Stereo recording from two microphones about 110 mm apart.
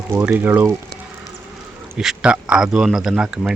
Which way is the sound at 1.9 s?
5° right (ahead or behind).